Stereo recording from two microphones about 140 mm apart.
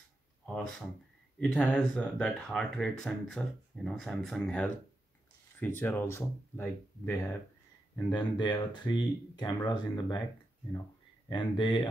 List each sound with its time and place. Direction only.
0.5 s speech: 5° left (ahead or behind)
8.1 s speech: 30° left (ahead or behind)
11.3 s speech: 35° left (ahead or behind)